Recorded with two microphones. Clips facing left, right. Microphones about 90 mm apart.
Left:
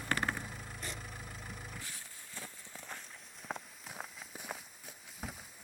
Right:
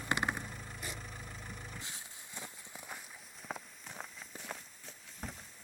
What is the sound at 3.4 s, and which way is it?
Walk, 5° left (ahead or behind).